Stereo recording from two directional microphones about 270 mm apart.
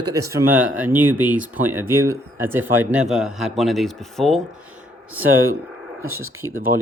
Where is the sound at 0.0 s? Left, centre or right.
Centre.